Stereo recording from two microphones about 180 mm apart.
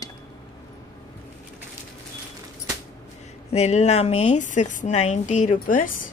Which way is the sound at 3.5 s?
40° left (ahead or behind).